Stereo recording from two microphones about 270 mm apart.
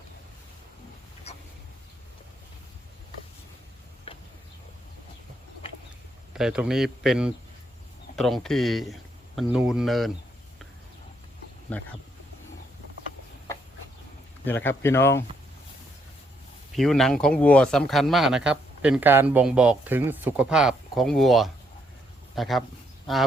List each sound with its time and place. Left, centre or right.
4.1 s a sound: left
6.3 s speech: centre
11.7 s speech: centre
14.4 s speech: centre
16.7 s speech: centre